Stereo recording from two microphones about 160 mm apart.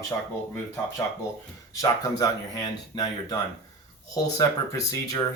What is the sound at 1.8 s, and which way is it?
Speech, 25° left (ahead or behind).